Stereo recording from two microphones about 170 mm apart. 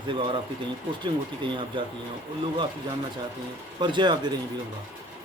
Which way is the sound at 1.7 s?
30° right (ahead or behind).